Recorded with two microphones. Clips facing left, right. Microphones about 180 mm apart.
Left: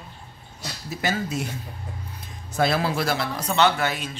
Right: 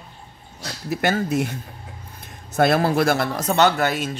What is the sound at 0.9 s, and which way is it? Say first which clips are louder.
Speech: right 6 dB; 60° right (ahead or behind).